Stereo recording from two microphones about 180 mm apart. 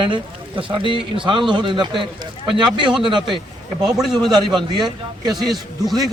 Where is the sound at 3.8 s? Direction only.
Centre (ahead or behind).